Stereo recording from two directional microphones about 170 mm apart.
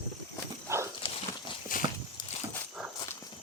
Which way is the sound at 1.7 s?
55° left (ahead or behind).